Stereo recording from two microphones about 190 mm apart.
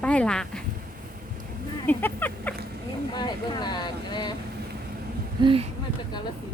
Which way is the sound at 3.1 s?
25° left (ahead or behind).